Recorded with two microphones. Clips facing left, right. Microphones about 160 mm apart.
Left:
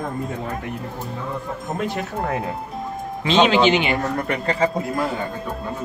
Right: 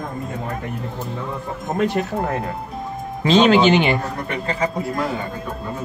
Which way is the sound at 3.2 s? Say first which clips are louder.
Right 2 dB; 45° right (ahead or behind).